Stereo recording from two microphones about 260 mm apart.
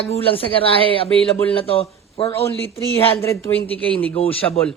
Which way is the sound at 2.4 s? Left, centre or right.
Centre.